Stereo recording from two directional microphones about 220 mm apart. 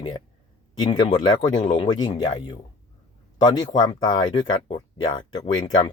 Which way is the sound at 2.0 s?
20° left (ahead or behind).